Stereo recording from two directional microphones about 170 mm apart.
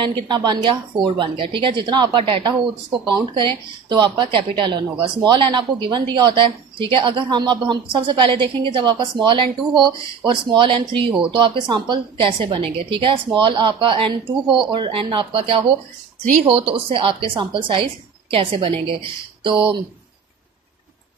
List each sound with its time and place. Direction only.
0.3 s a woman's voice: 25° right (ahead or behind)